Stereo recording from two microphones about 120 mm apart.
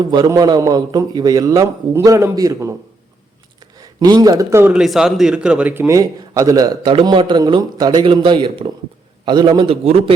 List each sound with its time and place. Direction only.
0.0 s a man's voice: 40° right (ahead or behind)
3.8 s a man's voice: 35° right (ahead or behind)
4.6 s speech: 5° right (ahead or behind)
5.9 s a man's voice: 30° right (ahead or behind)
9.8 s a man's voice: 60° right (ahead or behind)